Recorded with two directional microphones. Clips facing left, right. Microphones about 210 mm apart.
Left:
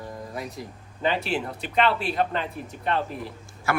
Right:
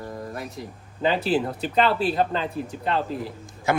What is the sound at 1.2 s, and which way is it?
Speech, 35° right (ahead or behind).